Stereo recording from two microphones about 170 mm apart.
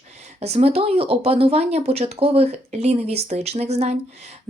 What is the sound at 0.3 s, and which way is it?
Speech, 40° right (ahead or behind).